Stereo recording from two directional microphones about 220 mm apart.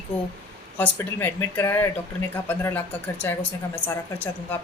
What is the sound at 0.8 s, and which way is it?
Speech, 10° left (ahead or behind).